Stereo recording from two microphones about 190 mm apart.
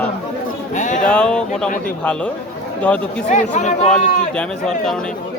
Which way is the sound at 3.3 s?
40° left (ahead or behind).